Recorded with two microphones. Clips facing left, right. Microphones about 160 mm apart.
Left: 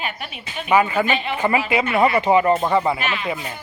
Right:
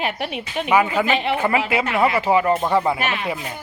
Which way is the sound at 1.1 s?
70° right (ahead or behind).